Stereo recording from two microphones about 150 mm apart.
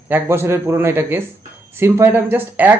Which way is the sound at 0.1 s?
15° right (ahead or behind).